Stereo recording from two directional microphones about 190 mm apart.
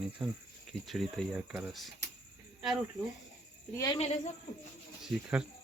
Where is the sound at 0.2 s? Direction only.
5° right (ahead or behind).